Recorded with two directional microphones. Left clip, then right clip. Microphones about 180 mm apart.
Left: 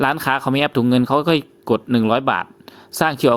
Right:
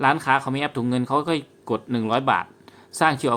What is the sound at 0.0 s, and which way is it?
A man's voice, 40° left (ahead or behind).